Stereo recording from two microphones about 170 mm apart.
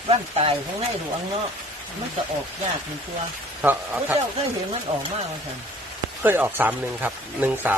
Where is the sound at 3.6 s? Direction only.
10° right (ahead or behind).